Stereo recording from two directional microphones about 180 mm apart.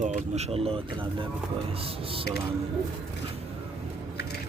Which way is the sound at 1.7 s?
30° right (ahead or behind).